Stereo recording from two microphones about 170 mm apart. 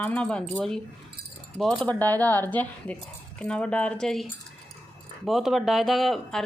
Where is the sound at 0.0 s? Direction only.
5° left (ahead or behind).